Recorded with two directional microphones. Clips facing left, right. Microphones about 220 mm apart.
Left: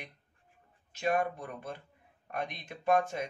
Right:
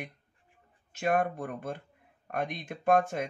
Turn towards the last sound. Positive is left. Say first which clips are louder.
# right 3 dB
turn(degrees=-50)  # may be behind; listen again after turning